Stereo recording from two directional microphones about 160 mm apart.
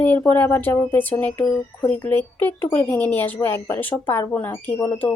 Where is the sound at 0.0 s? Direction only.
10° left (ahead or behind).